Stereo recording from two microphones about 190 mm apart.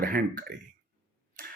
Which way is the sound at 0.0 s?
50° right (ahead or behind).